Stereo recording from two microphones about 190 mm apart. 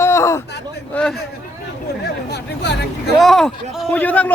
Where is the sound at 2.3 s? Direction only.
60° left (ahead or behind).